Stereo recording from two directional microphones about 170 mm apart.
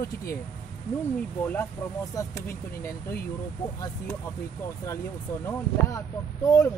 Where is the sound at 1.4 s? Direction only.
10° left (ahead or behind).